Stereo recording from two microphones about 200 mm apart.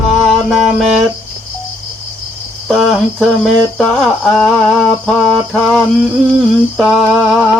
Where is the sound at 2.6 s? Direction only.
Centre (ahead or behind).